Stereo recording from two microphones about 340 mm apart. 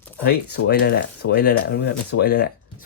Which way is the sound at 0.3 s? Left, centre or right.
Left.